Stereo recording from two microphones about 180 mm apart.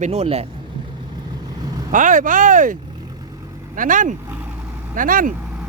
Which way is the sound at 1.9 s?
45° right (ahead or behind).